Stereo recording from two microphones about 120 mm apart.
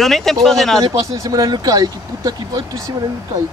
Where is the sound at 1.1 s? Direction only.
30° right (ahead or behind).